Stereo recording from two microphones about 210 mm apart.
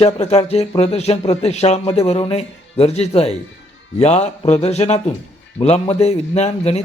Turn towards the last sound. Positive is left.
turn(degrees=30)  # may be behind; listen again after turning